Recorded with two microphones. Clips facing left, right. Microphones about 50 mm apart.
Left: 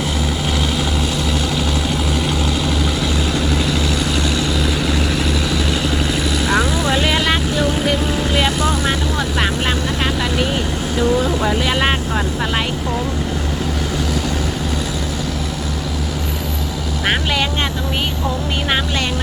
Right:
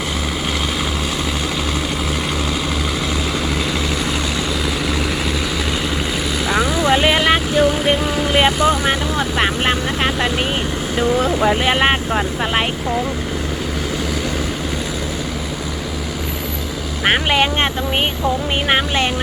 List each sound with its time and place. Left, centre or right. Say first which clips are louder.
6.5 s vehicle: right 2 dB; centre
11.5 s speech: right 2 dB; right
17.1 s vehicle: right 4 dB; right